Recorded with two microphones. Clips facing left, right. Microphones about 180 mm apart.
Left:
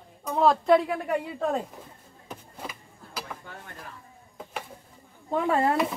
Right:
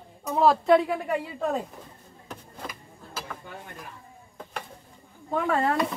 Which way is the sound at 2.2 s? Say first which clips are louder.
Even; 5° left (ahead or behind).